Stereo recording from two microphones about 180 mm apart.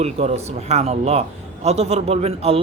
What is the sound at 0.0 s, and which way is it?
A man's voice, 35° right (ahead or behind).